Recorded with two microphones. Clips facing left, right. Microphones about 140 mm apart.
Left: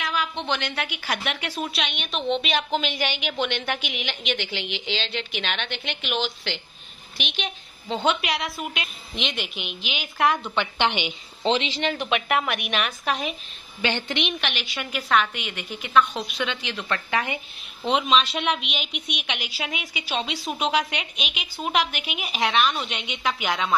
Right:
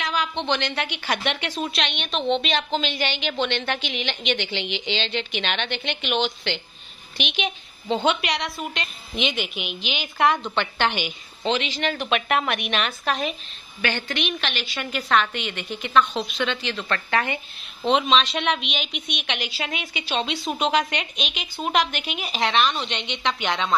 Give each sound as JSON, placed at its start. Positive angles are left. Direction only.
{"t": 0.0, "sound": "a woman's voice", "side_deg": 0}